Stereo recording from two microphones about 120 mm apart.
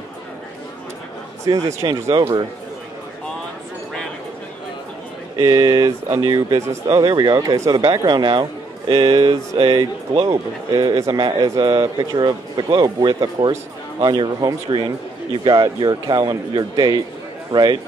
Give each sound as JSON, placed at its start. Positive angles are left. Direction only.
{"t": 1.8, "sound": "speech", "side_deg": -25}
{"t": 5.4, "sound": "speech", "side_deg": -35}
{"t": 7.0, "sound": "a man's voice", "side_deg": -40}
{"t": 10.2, "sound": "a man's voice", "side_deg": -30}